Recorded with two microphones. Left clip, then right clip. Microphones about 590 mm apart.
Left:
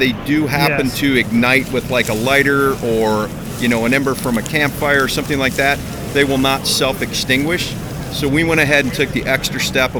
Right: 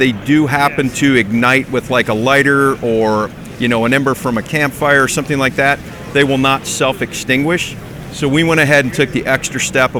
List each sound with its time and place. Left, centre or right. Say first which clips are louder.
0.3 s speech: right 3 dB; right